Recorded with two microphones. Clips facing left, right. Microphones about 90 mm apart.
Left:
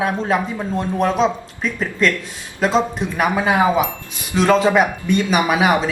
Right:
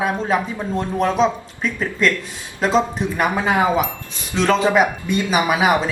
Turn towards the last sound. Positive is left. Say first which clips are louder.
# left 1 dB
turn(degrees=0)  # may be behind; listen again after turning